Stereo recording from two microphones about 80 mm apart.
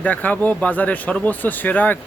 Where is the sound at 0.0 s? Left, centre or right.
Centre.